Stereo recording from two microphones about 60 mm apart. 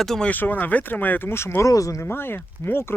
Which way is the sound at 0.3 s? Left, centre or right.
Left.